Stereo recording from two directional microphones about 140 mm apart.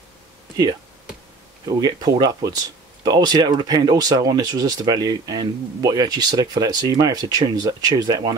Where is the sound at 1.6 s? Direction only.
30° right (ahead or behind).